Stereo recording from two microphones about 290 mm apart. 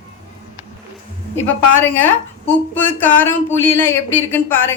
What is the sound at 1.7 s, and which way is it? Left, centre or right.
Speech, centre.